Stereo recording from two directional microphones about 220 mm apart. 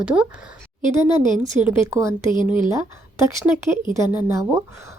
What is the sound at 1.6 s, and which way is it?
Speech, 15° right (ahead or behind).